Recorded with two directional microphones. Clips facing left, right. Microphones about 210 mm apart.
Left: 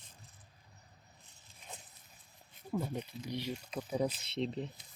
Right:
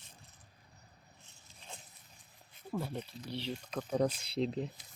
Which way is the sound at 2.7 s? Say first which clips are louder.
Left 1 dB; 10° left (ahead or behind).